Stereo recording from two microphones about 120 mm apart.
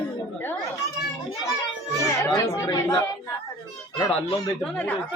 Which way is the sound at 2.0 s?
25° left (ahead or behind).